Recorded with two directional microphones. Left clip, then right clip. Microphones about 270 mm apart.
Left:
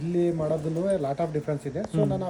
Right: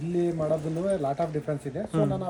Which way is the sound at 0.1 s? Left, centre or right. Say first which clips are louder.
Left 1 dB; centre.